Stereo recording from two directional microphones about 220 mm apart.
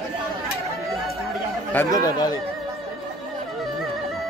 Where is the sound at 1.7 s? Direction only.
15° left (ahead or behind).